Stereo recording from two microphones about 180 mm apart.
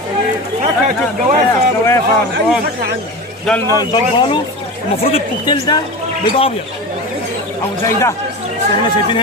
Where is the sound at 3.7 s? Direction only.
25° left (ahead or behind).